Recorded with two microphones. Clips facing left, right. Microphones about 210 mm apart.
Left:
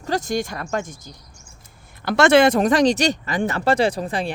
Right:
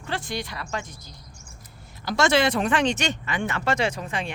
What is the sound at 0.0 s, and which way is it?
Speech, 40° left (ahead or behind).